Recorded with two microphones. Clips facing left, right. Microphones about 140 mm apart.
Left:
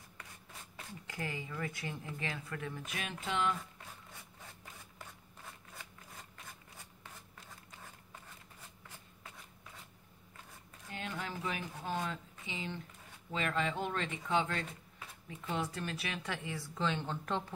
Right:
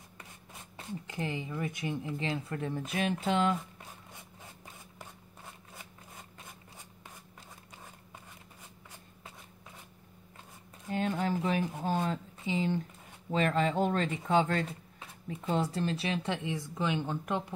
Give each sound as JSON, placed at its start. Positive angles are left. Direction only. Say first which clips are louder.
{"t": 0.7, "sound": "speech", "louder": "right 6 dB", "side_deg": -25}
{"t": 10.9, "sound": "a sound", "louder": "right 11 dB", "side_deg": -40}
{"t": 13.3, "sound": "speech", "louder": "right 7 dB", "side_deg": -40}